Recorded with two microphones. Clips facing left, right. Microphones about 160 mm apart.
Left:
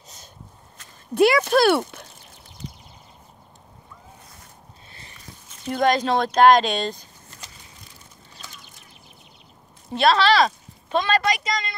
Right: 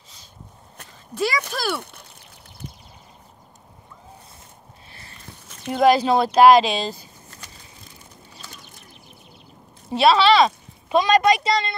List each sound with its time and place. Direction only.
1.1 s speech: 60° left (ahead or behind)
5.7 s speech: 5° right (ahead or behind)
9.8 s speech: 5° right (ahead or behind)
10.9 s a woman's voice: 15° right (ahead or behind); by 11.7 s 30° right (ahead or behind)